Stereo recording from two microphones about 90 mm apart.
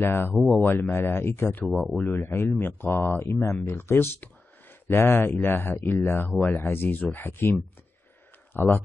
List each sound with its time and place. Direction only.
0.0 s speech: 25° left (ahead or behind)
1.7 s speech: centre (ahead or behind)
2.0 s speech: 20° left (ahead or behind)
8.5 s speech: 20° left (ahead or behind)